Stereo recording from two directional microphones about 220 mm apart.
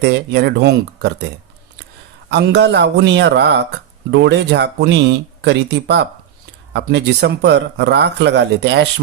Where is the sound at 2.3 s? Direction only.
50° right (ahead or behind).